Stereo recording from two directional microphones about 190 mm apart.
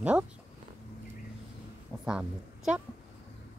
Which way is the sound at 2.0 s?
5° right (ahead or behind).